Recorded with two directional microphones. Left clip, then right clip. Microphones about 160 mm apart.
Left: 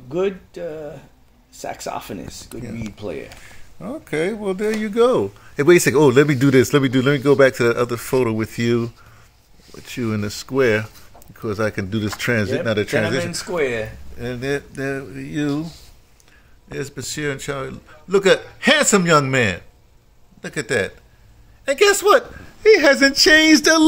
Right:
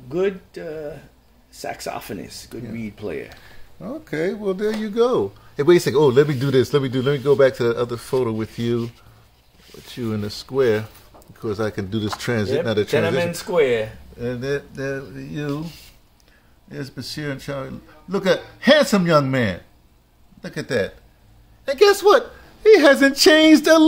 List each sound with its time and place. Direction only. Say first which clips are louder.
0.1 s speech: even; 15° left (ahead or behind)
9.9 s speech: left 2 dB; 20° left (ahead or behind)
16.7 s speech: left 4 dB; 25° left (ahead or behind)
22.6 s speech: even; 10° right (ahead or behind)
23.3 s a sound: even; centre (ahead or behind)